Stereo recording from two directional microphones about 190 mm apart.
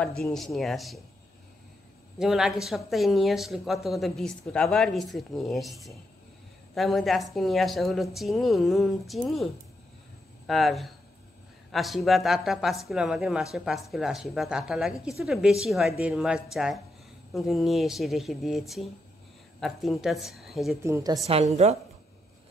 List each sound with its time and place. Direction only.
0.3 s speech: centre (ahead or behind)
2.1 s a woman's voice: 5° right (ahead or behind)
20.8 s a woman's voice: 15° right (ahead or behind)
21.3 s a woman's voice: 35° right (ahead or behind)